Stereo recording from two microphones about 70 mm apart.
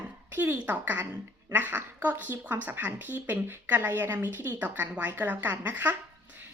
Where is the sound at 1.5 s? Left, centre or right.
Right.